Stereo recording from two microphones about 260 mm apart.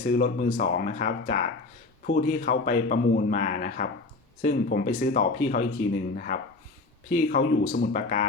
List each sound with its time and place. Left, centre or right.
0.1 s a man's voice: left